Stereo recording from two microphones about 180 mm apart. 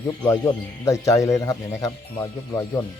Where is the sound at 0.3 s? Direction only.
20° left (ahead or behind).